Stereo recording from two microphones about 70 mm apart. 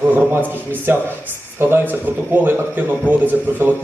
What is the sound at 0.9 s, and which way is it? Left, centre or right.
A man's voice, right.